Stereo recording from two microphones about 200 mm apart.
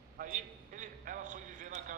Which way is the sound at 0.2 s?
40° right (ahead or behind).